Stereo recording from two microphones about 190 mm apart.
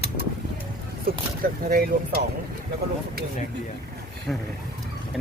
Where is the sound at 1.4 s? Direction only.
50° right (ahead or behind).